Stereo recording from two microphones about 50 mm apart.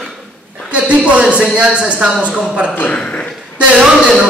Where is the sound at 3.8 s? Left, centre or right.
Centre.